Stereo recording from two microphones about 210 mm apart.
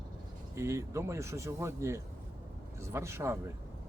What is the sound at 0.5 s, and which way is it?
Speech, 15° right (ahead or behind).